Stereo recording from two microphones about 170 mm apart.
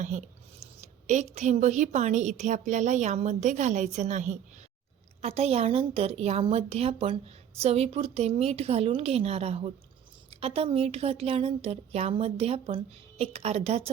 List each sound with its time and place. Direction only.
0.0 s a woman's voice: 45° right (ahead or behind)